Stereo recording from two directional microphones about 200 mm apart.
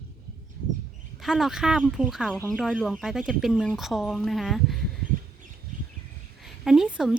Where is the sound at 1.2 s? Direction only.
Centre (ahead or behind).